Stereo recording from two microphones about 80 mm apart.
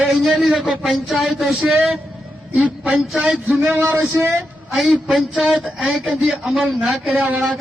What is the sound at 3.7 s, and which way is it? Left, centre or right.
Speech, right.